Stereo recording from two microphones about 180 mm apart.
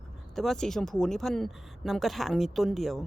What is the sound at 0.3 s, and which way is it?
A woman's voice, centre (ahead or behind).